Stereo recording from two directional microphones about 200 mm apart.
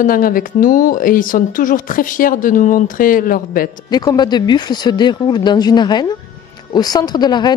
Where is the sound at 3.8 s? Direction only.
20° left (ahead or behind).